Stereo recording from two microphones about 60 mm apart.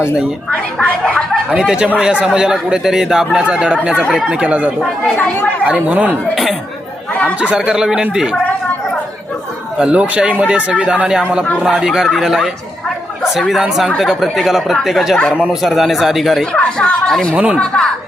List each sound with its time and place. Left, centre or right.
0.8 s speech: left
1.5 s speech: centre
7.3 s speech: right
9.7 s speech: centre
13.5 s speech: centre
16.4 s speech: centre
17.3 s speech: centre
17.6 s speech: centre